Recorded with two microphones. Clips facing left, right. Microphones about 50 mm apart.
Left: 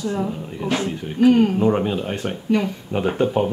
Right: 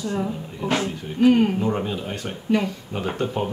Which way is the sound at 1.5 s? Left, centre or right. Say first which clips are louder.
Left 5 dB; centre.